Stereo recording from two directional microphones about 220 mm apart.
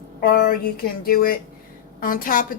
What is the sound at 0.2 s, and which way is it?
Speech, 40° left (ahead or behind).